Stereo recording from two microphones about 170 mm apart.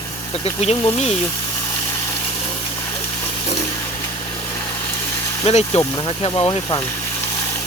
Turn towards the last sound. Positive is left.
turn(degrees=25)  # may be behind; listen again after turning